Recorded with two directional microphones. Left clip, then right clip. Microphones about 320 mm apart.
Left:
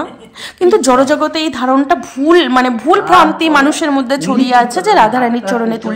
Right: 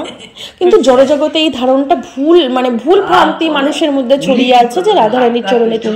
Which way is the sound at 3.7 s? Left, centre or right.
Left.